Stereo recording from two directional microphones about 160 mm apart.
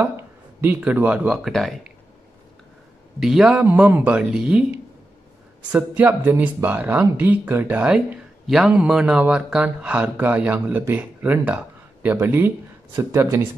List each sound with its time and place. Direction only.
0.6 s speech: 10° right (ahead or behind)
3.2 s speech: 5° right (ahead or behind)
5.7 s speech: 10° right (ahead or behind)